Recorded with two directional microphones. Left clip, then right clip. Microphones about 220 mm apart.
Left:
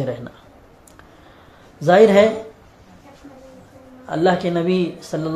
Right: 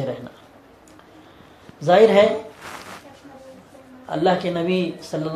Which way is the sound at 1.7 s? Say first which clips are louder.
Left 2 dB; 40° left (ahead or behind).